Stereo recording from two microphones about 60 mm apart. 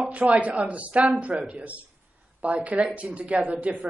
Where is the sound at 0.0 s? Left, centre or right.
Right.